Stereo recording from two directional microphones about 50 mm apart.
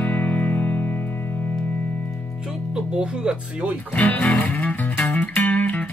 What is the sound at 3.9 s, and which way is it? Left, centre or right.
Speech, left.